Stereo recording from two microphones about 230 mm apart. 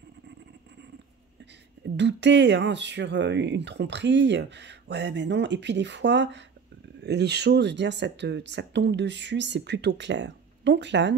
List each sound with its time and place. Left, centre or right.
2.0 s speech: right